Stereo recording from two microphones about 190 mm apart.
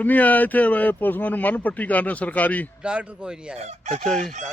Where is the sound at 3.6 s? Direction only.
35° right (ahead or behind).